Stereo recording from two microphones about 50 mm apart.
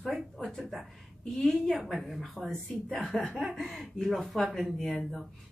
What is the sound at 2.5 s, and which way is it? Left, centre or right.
Speech, centre.